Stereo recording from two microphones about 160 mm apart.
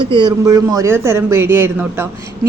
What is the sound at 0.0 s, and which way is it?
Speech, 30° right (ahead or behind).